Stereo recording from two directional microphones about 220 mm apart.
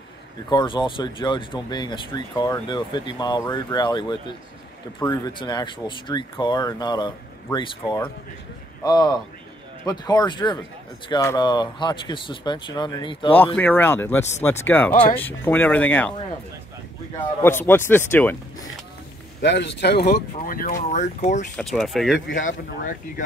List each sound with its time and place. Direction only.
0.5 s speech: 20° left (ahead or behind)
13.6 s speech: 10° left (ahead or behind)
17.4 s speech: 10° left (ahead or behind)
19.4 s speech: 50° left (ahead or behind); by 21.5 s 35° left (ahead or behind)
21.5 s speech: centre (ahead or behind)
22.4 s speech: 35° left (ahead or behind)